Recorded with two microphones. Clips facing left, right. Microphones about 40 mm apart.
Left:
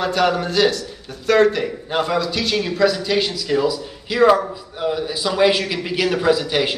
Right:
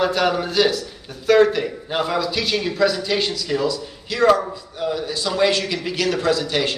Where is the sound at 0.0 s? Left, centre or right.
Centre.